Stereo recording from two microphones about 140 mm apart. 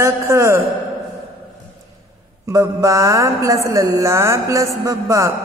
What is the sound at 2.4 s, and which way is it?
Speech, 25° right (ahead or behind).